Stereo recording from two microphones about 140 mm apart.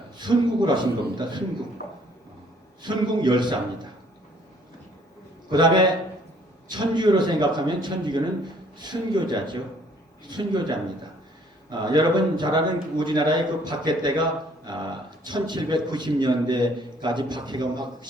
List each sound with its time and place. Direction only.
0.2 s a man's voice: 30° right (ahead or behind)
2.8 s a man's voice: 35° right (ahead or behind)
5.5 s a man's voice: 30° right (ahead or behind)